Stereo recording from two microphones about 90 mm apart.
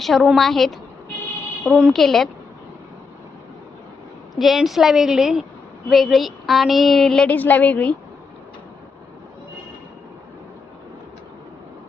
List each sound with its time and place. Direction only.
0.0 s a woman's voice: centre (ahead or behind)
4.4 s a woman's voice: centre (ahead or behind)
7.3 s a woman's voice: 20° left (ahead or behind)